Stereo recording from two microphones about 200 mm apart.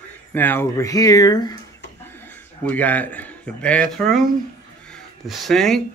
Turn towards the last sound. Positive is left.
turn(degrees=0)  # may be behind; listen again after turning